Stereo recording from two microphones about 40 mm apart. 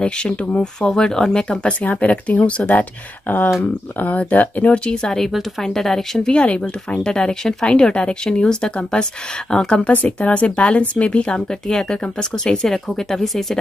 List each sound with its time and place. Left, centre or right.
0.0 s speech: left
1.9 s speech: left
2.7 s speech: left
4.7 s speech: left
5.6 s speech: centre
6.2 s speech: left
10.0 s speech: left
11.6 s speech: centre
12.9 s speech: centre